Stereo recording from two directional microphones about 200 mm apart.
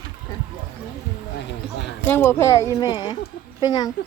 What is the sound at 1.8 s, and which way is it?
Speech, 10° left (ahead or behind).